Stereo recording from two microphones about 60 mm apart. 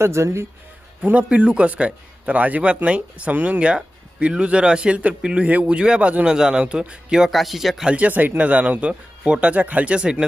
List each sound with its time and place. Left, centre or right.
0.0 s speech: right
1.0 s a man's voice: right
7.3 s speech: centre
7.9 s a man's voice: right